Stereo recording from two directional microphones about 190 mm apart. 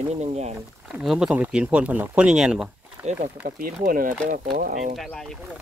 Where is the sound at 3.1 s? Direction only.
45° right (ahead or behind).